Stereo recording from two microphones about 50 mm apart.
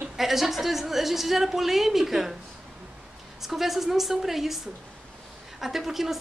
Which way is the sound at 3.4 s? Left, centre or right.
Centre.